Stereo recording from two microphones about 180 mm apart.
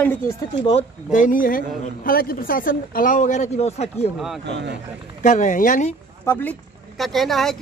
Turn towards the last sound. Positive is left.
turn(degrees=0)  # may be behind; listen again after turning